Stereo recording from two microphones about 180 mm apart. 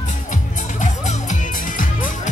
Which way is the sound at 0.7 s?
45° left (ahead or behind).